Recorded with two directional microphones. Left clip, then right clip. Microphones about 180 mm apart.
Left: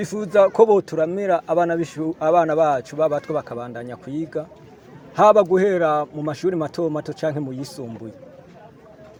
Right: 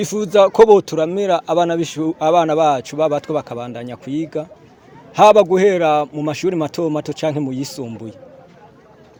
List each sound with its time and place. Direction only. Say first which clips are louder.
0.0 s speech: right 3 dB; 55° right (ahead or behind)